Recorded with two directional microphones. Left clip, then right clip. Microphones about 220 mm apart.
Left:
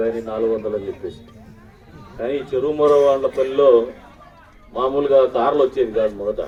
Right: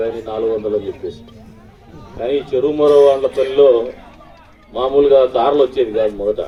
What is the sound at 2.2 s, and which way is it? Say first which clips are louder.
Speech: right 4 dB; 40° right (ahead or behind).